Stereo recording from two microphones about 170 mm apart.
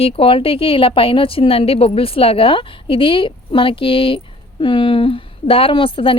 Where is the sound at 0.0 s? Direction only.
35° left (ahead or behind).